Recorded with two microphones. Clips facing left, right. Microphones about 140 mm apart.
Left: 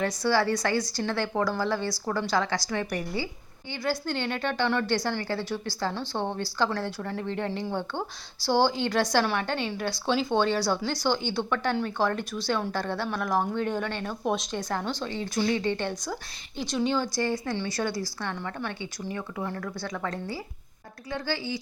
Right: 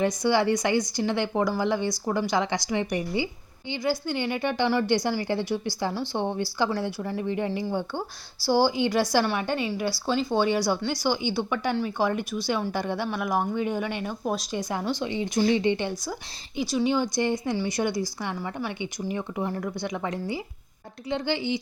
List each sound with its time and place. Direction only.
0.0 s a woman's voice: 15° right (ahead or behind)